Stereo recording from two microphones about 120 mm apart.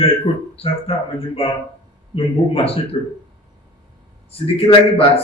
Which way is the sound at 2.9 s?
45° left (ahead or behind).